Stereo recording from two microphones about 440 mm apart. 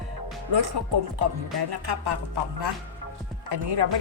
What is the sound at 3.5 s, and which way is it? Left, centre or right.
Speech, right.